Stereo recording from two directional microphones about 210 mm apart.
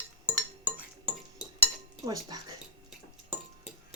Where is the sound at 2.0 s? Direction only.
20° right (ahead or behind).